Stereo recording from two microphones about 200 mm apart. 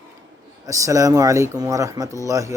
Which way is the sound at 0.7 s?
15° right (ahead or behind).